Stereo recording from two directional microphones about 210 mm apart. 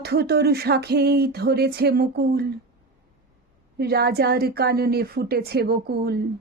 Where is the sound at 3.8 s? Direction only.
50° right (ahead or behind).